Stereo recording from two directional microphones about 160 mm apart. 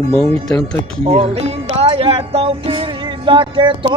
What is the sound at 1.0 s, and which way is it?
Speech, 35° right (ahead or behind).